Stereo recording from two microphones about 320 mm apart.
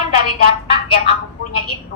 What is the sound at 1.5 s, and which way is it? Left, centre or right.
Speech, left.